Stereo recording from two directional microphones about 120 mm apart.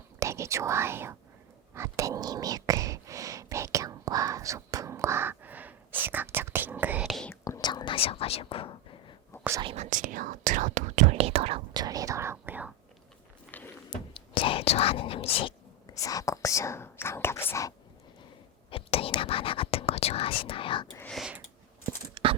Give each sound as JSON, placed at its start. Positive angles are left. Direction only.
{"t": 0.2, "sound": "speech", "side_deg": -25}
{"t": 1.7, "sound": "whispering", "side_deg": -25}
{"t": 7.1, "sound": "whispering", "side_deg": 5}
{"t": 7.6, "sound": "whispering", "side_deg": 40}
{"t": 9.3, "sound": "whispering", "side_deg": 25}
{"t": 9.7, "sound": "speech", "side_deg": -80}
{"t": 11.7, "sound": "speech", "side_deg": -30}
{"t": 13.5, "sound": "a sound", "side_deg": 15}
{"t": 13.9, "sound": "speech", "side_deg": 50}
{"t": 16.0, "sound": "speech", "side_deg": 30}
{"t": 18.7, "sound": "speech", "side_deg": 50}
{"t": 21.1, "sound": "a sound", "side_deg": 0}
{"t": 22.1, "sound": "a sound", "side_deg": -50}